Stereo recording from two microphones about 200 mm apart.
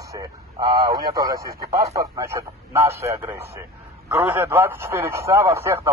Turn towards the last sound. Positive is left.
turn(degrees=-10)  # may be behind; listen again after turning